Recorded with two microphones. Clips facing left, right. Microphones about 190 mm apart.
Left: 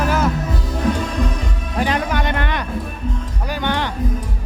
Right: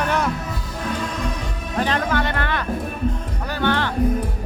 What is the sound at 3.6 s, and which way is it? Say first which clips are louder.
Music: right 1 dB; 15° left (ahead or behind).